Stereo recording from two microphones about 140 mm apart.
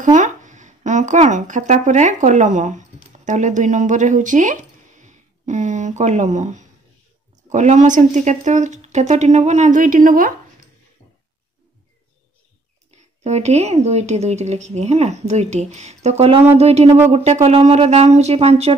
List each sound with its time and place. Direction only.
0.0 s speech: 65° right (ahead or behind)
12.9 s speech: 50° right (ahead or behind)